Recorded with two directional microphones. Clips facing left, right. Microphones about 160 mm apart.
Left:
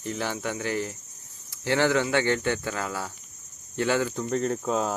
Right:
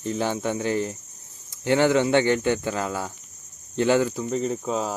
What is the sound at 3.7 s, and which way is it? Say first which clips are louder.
Speech: right 5 dB; 20° right (ahead or behind).